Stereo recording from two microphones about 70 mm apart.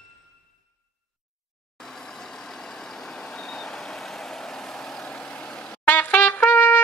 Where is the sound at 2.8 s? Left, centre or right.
Centre.